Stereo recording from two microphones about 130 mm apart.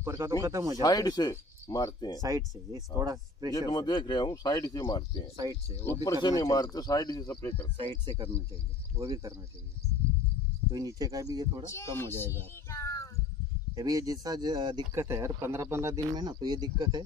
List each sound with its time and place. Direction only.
0.0 s speech: 20° right (ahead or behind)
0.8 s speech: 30° left (ahead or behind)
2.2 s speech: 25° right (ahead or behind)
3.5 s speech: 30° left (ahead or behind)
6.2 s speech: 30° left (ahead or behind)
7.7 s speech: 40° right (ahead or behind)
8.9 s speech: 25° right (ahead or behind)
10.7 s speech: 25° right (ahead or behind)
11.7 s child singing: 20° left (ahead or behind)
13.7 s speech: 25° right (ahead or behind)
15.0 s speech: 20° right (ahead or behind)